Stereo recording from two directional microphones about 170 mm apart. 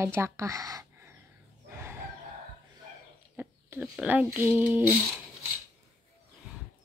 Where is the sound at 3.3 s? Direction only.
10° right (ahead or behind).